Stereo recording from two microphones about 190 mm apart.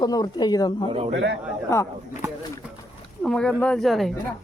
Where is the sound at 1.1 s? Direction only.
70° right (ahead or behind).